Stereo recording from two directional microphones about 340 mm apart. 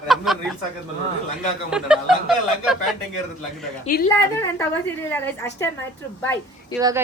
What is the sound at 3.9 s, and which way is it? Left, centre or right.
Speech, left.